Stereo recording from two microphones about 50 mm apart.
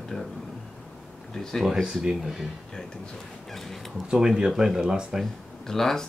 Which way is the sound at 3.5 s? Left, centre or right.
Centre.